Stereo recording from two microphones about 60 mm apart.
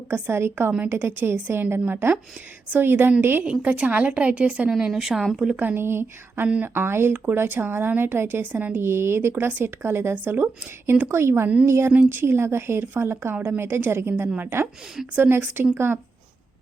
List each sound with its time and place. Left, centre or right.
0.1 s a woman's voice: right
3.4 s a woman's voice: centre
4.9 s speech: centre
5.5 s a woman's voice: right
8.8 s a woman's voice: right